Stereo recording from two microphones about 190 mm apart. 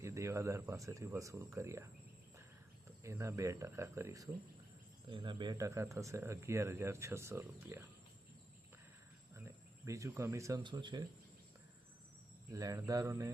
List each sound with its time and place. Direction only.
0.0 s speech: 15° right (ahead or behind)
3.0 s speech: 15° right (ahead or behind)
9.8 s speech: 15° right (ahead or behind)
12.5 s speech: 20° right (ahead or behind)